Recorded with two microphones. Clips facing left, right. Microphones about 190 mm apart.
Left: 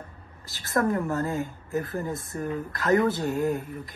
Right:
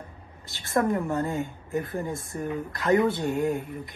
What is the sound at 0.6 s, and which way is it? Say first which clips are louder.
Speech: even; 20° right (ahead or behind).